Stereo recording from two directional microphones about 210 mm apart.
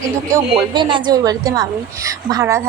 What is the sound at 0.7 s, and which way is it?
A woman's voice, 20° right (ahead or behind).